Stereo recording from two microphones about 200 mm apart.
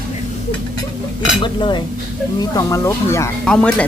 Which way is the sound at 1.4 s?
25° left (ahead or behind).